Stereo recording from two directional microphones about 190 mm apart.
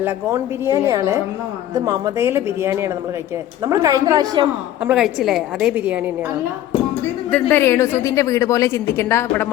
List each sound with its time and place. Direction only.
0.0 s a woman's voice: 15° right (ahead or behind)
4.9 s a woman's voice: centre (ahead or behind)
7.3 s a woman's voice: 5° left (ahead or behind)